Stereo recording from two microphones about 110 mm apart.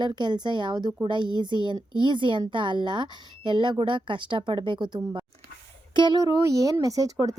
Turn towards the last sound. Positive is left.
turn(degrees=-35)  # may be behind; listen again after turning